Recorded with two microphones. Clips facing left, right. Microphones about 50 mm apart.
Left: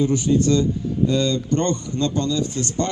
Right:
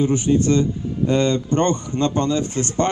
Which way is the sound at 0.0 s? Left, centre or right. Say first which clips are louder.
Right 1 dB; right.